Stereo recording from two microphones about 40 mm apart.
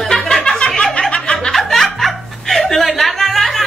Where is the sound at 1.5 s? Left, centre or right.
Centre.